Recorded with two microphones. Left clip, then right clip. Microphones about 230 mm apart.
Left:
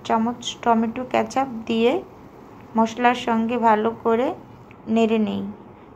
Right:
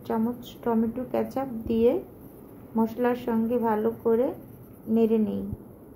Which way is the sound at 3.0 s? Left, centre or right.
Centre.